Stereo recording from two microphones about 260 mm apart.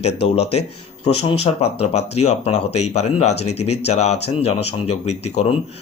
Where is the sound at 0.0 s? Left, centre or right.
Left.